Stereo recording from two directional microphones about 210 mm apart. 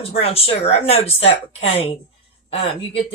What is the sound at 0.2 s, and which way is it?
Speech, 30° left (ahead or behind).